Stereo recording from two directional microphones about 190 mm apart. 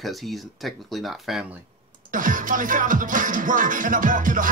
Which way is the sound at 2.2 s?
45° right (ahead or behind).